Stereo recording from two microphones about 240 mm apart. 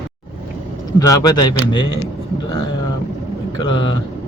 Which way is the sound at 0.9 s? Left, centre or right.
Centre.